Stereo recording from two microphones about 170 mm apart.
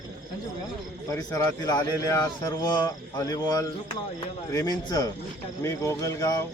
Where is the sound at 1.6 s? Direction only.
25° left (ahead or behind).